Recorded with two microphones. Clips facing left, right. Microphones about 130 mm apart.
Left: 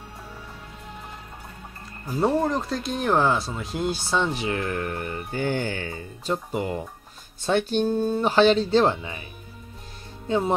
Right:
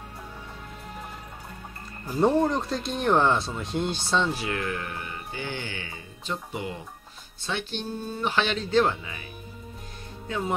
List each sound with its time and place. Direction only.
2.0 s speech: centre (ahead or behind)
4.3 s speech: 25° left (ahead or behind)
4.6 s speech: 45° left (ahead or behind)
10.2 s speech: 30° left (ahead or behind)